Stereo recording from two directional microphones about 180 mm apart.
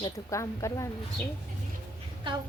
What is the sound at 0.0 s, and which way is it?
Speech, 15° left (ahead or behind).